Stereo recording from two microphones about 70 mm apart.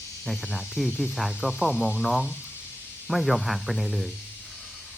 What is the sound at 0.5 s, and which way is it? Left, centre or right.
Speech, centre.